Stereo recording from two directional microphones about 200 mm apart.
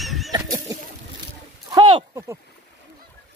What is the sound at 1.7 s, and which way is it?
Speech, 25° right (ahead or behind).